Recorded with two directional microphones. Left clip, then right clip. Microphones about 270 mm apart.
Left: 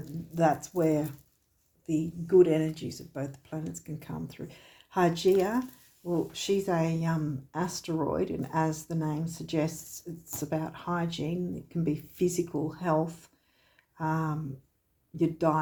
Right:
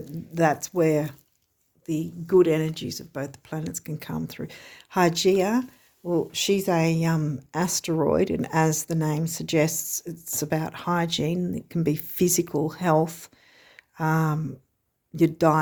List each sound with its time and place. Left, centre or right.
0.3 s speech: right
13.7 s a sound: right
15.1 s speech: right